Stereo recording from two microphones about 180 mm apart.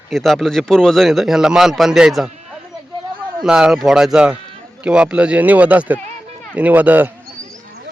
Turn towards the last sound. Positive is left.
turn(degrees=-10)  # may be behind; listen again after turning